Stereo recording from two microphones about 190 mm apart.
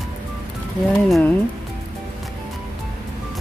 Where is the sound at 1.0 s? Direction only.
Centre (ahead or behind).